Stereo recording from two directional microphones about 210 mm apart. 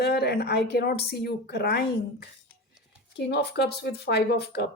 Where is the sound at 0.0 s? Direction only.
50° left (ahead or behind).